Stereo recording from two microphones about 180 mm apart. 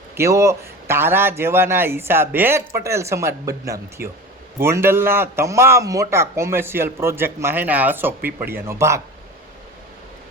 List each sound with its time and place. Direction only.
0.2 s a man's voice: 15° right (ahead or behind)